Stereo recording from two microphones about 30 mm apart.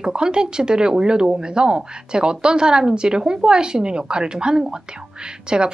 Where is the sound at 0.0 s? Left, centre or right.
Right.